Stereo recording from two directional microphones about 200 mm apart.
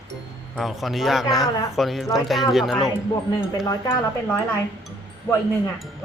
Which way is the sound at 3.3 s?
20° left (ahead or behind).